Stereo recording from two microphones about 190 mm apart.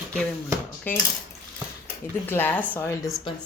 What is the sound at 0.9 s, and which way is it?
Speech, 10° left (ahead or behind).